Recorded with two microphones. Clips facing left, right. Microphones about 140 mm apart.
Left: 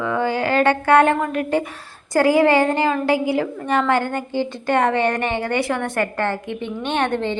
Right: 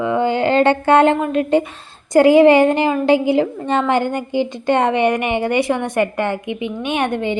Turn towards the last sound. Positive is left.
turn(degrees=-10)  # may be behind; listen again after turning